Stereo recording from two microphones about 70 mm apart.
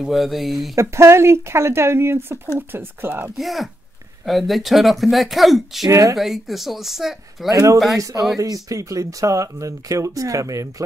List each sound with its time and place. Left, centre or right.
0.0 s speech: centre
0.7 s speech: right
3.3 s speech: centre
5.9 s speech: right
6.1 s speech: centre
7.5 s speech: right